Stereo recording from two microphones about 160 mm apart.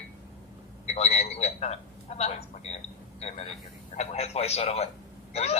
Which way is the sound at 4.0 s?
40° left (ahead or behind).